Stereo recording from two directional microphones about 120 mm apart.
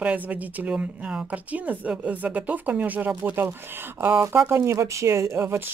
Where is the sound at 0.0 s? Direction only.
10° right (ahead or behind).